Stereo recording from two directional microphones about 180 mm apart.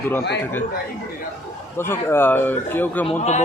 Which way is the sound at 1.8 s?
15° left (ahead or behind).